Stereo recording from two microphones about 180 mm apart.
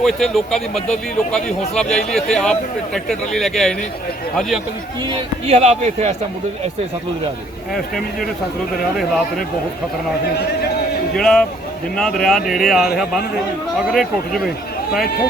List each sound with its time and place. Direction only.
0.0 s speech: centre (ahead or behind)
5.0 s speech: 30° right (ahead or behind)
11.1 s speech: 5° left (ahead or behind)
13.9 s speech: centre (ahead or behind)